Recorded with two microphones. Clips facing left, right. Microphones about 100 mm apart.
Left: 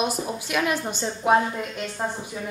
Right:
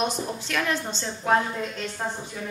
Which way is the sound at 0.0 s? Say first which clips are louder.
Left 1 dB; 10° left (ahead or behind).